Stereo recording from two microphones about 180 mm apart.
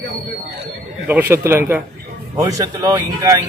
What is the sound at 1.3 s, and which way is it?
A man's voice, 15° right (ahead or behind).